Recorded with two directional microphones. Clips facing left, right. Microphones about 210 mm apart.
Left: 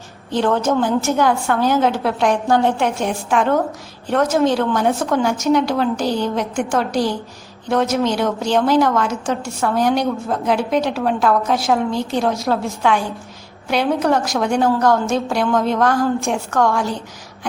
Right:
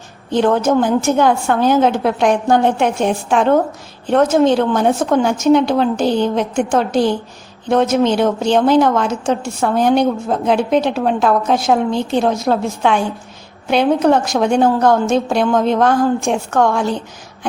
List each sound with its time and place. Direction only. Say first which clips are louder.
0.3 s a woman's voice: right 3 dB; 15° right (ahead or behind)